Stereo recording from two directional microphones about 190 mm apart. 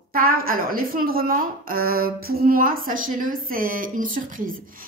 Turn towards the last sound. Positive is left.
turn(degrees=-45)  # may be behind; listen again after turning